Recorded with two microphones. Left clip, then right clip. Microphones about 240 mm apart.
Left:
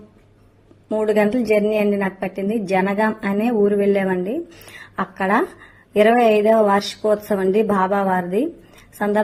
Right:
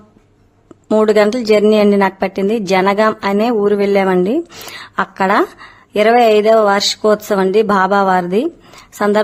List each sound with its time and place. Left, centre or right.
0.9 s a woman's voice: right